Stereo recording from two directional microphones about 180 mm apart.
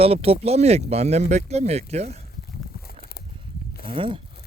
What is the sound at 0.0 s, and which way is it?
Speech, 35° right (ahead or behind).